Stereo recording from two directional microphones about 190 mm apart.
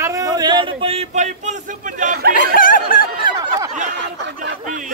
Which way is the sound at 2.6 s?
45° left (ahead or behind).